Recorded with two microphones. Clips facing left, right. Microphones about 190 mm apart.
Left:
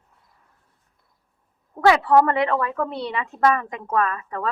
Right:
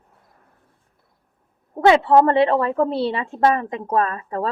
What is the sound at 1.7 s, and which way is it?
A woman's voice, 25° right (ahead or behind).